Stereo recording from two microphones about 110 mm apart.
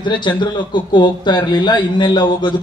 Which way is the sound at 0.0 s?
45° left (ahead or behind).